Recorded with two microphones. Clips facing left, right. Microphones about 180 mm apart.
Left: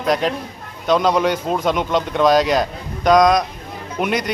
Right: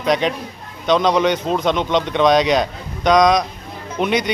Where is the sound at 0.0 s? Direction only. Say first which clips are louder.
Right 1 dB; centre (ahead or behind).